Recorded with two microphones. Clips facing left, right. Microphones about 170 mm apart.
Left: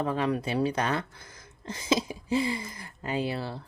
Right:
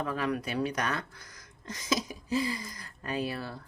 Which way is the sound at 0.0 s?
25° left (ahead or behind).